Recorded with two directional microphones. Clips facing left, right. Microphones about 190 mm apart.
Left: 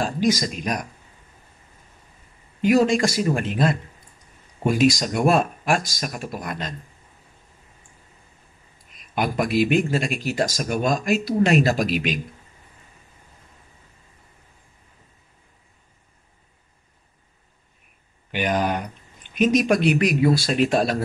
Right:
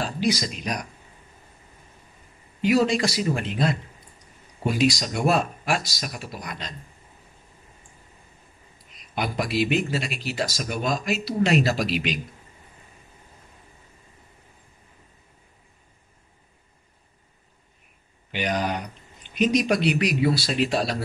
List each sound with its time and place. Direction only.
0.0 s speech: 45° left (ahead or behind)
2.6 s speech: 50° left (ahead or behind)
8.9 s speech: 50° left (ahead or behind)
18.3 s speech: 50° left (ahead or behind)